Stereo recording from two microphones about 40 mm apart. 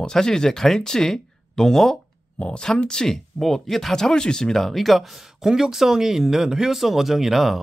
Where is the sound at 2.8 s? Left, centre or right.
Centre.